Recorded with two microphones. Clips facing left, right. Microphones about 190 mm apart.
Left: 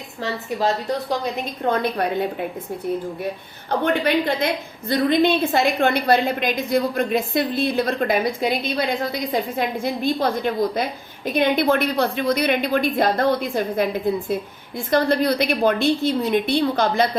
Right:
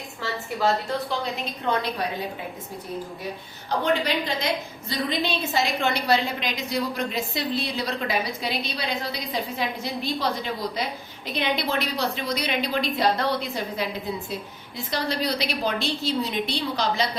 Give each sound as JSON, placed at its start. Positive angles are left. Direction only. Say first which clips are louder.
{"t": 1.8, "sound": "a woman's voice", "louder": "left 7 dB", "side_deg": 55}
{"t": 3.7, "sound": "a woman's voice", "louder": "left 4 dB", "side_deg": 55}
{"t": 14.8, "sound": "a woman's voice", "louder": "left 8 dB", "side_deg": 55}